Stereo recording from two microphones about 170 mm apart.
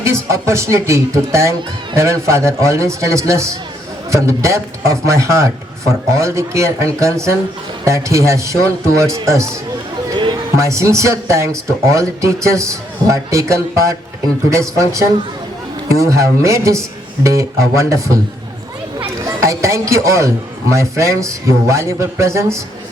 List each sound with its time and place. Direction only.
0.0 s a man's voice: 15° right (ahead or behind)